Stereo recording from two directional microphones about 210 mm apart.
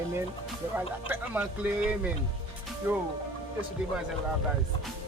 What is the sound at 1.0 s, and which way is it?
Speech, 10° right (ahead or behind).